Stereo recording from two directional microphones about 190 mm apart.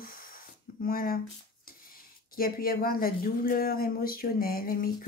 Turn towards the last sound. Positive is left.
turn(degrees=50)  # may be behind; listen again after turning